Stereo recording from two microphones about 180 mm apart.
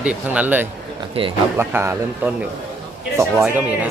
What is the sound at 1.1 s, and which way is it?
Speech, 30° right (ahead or behind).